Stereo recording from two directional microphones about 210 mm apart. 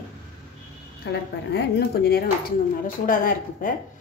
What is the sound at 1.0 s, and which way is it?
A woman's voice, 55° left (ahead or behind).